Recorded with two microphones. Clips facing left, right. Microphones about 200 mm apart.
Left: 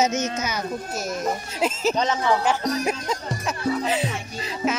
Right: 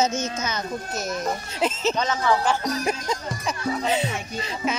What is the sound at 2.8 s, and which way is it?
Speech, 5° left (ahead or behind).